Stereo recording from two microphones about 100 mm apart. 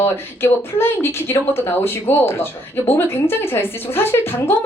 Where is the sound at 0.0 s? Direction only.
20° left (ahead or behind).